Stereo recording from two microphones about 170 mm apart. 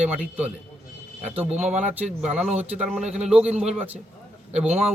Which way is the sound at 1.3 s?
35° right (ahead or behind).